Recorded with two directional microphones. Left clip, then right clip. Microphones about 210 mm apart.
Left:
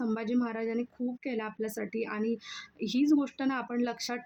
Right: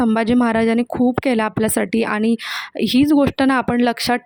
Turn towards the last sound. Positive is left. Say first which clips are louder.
# right 16 dB
turn(degrees=-45)  # may be behind; listen again after turning